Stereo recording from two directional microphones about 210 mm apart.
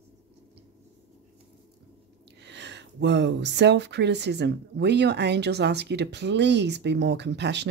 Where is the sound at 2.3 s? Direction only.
55° right (ahead or behind).